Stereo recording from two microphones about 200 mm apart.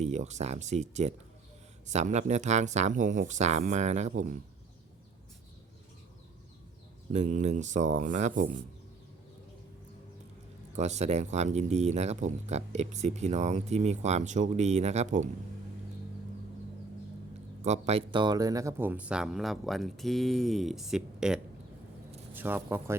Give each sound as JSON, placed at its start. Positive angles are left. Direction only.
{"t": 0.0, "sound": "speech", "side_deg": -35}
{"t": 7.1, "sound": "speech", "side_deg": -40}
{"t": 10.8, "sound": "speech", "side_deg": -35}
{"t": 17.6, "sound": "speech", "side_deg": -35}